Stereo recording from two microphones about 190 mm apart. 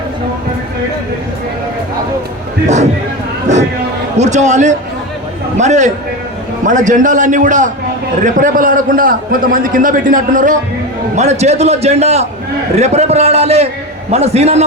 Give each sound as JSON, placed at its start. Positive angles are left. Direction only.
{"t": 4.2, "sound": "a man's voice", "side_deg": -40}